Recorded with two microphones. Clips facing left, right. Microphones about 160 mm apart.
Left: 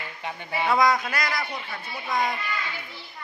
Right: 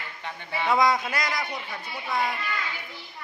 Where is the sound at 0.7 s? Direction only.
25° right (ahead or behind).